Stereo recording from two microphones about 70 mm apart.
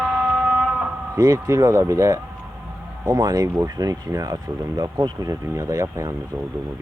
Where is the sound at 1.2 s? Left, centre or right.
Right.